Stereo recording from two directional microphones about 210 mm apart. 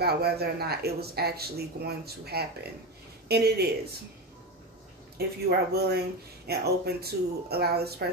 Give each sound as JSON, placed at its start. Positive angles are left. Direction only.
{"t": 0.0, "sound": "speech", "side_deg": -50}
{"t": 5.7, "sound": "speech", "side_deg": -50}